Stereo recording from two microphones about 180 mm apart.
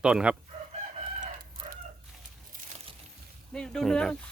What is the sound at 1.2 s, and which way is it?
Chicken, 50° right (ahead or behind).